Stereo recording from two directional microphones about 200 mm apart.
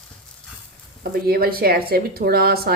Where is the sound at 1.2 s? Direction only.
50° right (ahead or behind).